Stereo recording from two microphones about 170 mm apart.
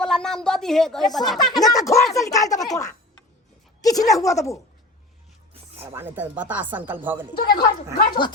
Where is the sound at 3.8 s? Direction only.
20° left (ahead or behind).